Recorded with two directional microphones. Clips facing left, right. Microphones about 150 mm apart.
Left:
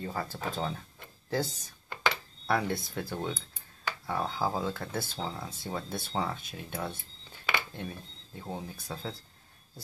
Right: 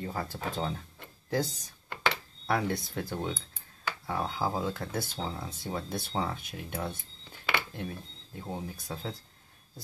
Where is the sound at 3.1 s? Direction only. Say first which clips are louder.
Even; 10° right (ahead or behind).